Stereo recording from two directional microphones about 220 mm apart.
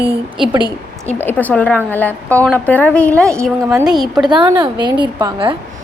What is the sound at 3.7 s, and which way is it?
A woman's voice, 15° right (ahead or behind).